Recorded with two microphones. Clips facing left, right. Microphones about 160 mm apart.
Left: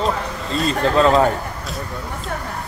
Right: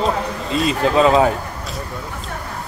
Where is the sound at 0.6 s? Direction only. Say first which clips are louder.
Right 1 dB; 10° right (ahead or behind).